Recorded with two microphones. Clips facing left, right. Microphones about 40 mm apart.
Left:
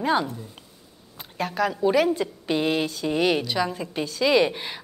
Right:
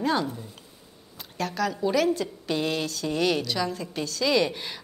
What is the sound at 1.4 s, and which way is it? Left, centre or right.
A woman's voice, centre.